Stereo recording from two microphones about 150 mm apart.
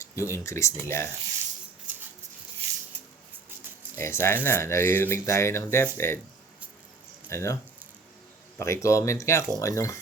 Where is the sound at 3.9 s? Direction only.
15° left (ahead or behind).